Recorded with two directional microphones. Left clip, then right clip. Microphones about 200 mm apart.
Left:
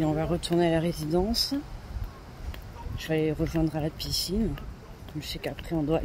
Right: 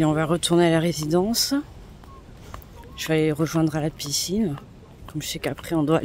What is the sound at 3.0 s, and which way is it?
Speech, 20° right (ahead or behind).